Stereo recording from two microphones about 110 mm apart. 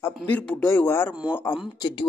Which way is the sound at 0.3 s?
10° left (ahead or behind).